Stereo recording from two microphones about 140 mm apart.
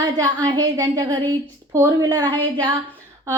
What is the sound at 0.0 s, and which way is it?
A woman's voice, 30° right (ahead or behind).